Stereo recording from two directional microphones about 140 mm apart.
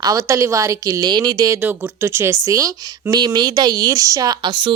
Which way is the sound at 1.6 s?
15° right (ahead or behind).